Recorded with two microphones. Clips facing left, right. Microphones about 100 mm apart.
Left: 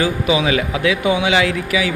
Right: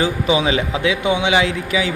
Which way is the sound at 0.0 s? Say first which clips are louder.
Even; 25° right (ahead or behind).